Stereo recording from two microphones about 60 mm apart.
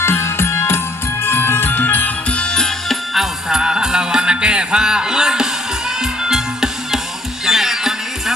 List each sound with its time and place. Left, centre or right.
0.0 s music: left
2.3 s music: centre
2.9 s music: centre